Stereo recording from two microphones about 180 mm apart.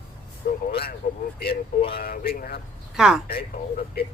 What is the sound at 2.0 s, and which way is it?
Speech, 55° left (ahead or behind).